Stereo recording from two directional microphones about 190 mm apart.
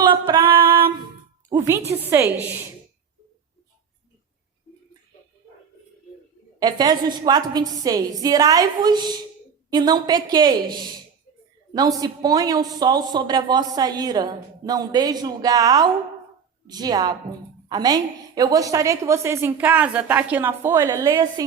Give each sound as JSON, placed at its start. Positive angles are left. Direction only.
{"t": 0.0, "sound": "music", "side_deg": -25}
{"t": 0.8, "sound": "a sound", "side_deg": -25}
{"t": 1.5, "sound": "a woman's voice", "side_deg": -15}
{"t": 6.6, "sound": "a woman's voice", "side_deg": -20}